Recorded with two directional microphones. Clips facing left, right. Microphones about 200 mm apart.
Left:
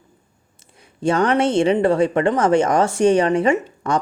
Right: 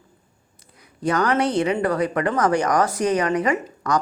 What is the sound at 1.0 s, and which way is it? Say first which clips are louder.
Speech: left 3 dB; 30° left (ahead or behind).